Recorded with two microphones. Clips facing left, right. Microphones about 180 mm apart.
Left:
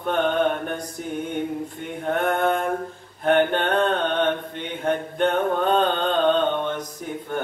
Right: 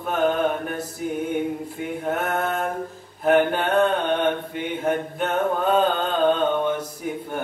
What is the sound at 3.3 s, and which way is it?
Mantra, 5° right (ahead or behind).